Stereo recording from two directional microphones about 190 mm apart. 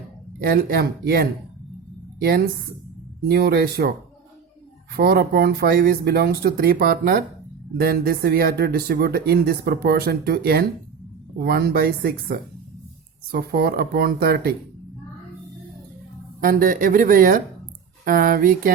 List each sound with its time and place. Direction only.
0.4 s speech: 55° right (ahead or behind)
4.9 s speech: 55° right (ahead or behind)
16.4 s speech: 50° right (ahead or behind)